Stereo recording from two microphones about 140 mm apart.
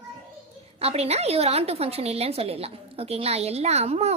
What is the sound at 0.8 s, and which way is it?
A woman's voice, 45° right (ahead or behind).